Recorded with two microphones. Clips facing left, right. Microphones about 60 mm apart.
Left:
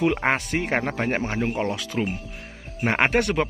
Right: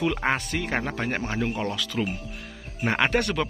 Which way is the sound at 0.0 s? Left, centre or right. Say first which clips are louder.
Left 3 dB; left.